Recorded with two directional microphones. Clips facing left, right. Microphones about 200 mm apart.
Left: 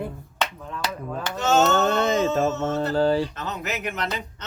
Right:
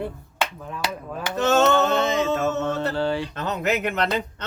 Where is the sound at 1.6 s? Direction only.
45° left (ahead or behind).